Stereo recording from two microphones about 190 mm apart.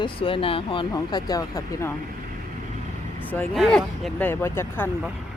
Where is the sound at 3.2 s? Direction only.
10° left (ahead or behind).